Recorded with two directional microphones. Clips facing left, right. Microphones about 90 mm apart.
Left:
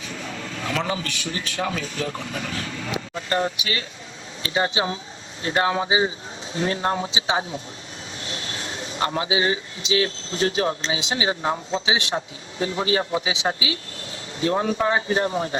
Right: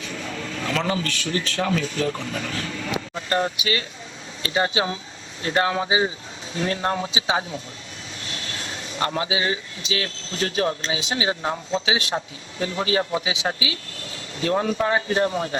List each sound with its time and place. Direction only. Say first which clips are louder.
0.1 s speech: right 1 dB; 10° left (ahead or behind)
4.4 s speech: right 1 dB; 20° left (ahead or behind)